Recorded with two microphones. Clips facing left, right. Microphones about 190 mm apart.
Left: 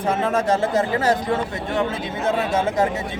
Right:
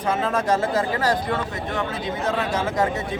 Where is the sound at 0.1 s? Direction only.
25° left (ahead or behind).